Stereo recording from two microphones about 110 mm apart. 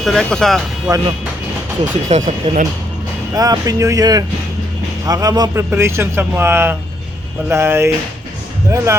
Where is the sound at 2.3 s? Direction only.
90° right.